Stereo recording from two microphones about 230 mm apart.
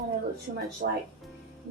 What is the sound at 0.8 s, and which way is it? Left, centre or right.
Speech, right.